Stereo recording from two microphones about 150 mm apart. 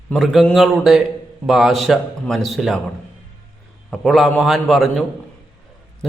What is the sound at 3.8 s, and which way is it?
Speech, centre (ahead or behind).